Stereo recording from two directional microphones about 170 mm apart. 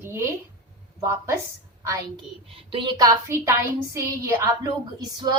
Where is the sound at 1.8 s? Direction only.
20° right (ahead or behind).